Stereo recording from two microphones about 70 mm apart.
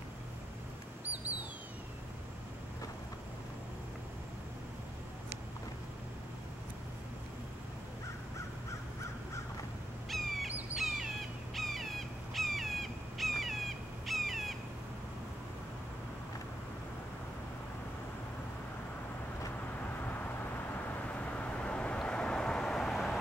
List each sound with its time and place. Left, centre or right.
1.0 s a sound: right
10.0 s bird: centre
10.8 s crow: centre
19.8 s vehicle: left; by 23.1 s centre